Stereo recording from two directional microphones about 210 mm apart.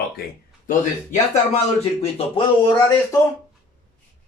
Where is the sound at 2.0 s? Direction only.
25° left (ahead or behind).